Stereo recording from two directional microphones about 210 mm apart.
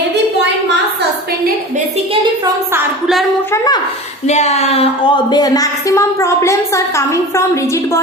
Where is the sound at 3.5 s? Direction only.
20° left (ahead or behind).